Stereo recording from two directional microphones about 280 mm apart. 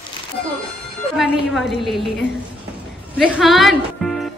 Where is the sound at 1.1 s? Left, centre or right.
Centre.